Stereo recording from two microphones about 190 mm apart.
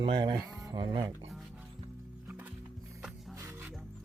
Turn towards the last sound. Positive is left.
turn(degrees=-15)  # may be behind; listen again after turning